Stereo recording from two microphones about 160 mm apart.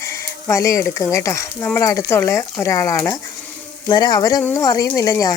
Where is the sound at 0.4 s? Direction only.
20° left (ahead or behind).